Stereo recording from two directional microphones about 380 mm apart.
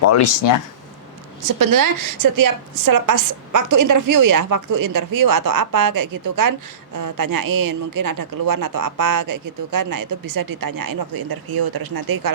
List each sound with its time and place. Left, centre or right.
0.0 s speech: left
1.5 s speech: right